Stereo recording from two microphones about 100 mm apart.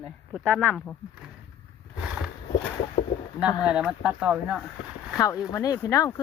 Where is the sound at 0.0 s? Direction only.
Centre (ahead or behind).